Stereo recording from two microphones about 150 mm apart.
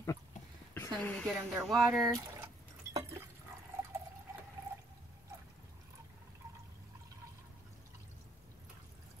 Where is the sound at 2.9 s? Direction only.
20° right (ahead or behind).